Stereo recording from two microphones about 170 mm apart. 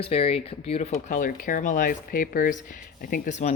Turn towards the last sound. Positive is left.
turn(degrees=45)  # may be behind; listen again after turning